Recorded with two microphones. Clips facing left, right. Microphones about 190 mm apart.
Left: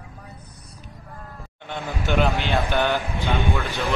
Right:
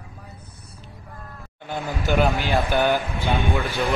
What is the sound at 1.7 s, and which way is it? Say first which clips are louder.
Speech: right 2 dB; centre (ahead or behind).